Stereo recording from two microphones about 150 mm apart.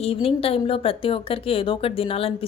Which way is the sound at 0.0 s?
40° left (ahead or behind).